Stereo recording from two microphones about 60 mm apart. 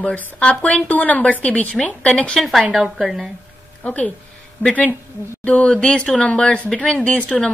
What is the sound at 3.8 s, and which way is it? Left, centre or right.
Speech, left.